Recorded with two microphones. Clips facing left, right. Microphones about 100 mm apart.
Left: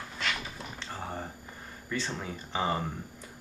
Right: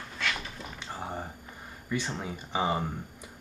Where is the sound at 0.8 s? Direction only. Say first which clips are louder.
Right 2 dB; 15° right (ahead or behind).